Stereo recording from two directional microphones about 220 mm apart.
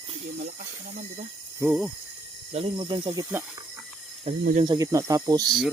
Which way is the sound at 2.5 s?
25° right (ahead or behind).